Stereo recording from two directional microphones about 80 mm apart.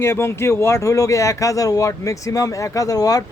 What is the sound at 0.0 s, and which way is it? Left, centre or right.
Speech, left.